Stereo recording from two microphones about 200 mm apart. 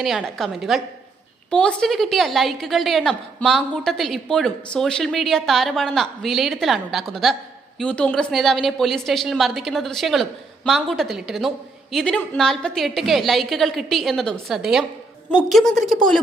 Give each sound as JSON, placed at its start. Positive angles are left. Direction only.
{"t": 0.0, "sound": "a woman's voice", "side_deg": 0}